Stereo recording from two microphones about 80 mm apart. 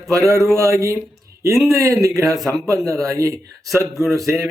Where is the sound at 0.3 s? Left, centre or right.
Right.